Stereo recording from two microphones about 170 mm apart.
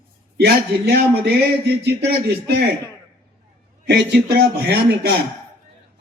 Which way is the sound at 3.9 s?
70° right (ahead or behind).